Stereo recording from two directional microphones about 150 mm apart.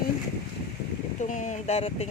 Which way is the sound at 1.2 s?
55° left (ahead or behind).